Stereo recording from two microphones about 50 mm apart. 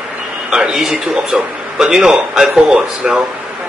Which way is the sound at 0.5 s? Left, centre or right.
Centre.